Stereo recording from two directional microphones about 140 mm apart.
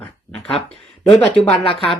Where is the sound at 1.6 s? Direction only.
40° left (ahead or behind).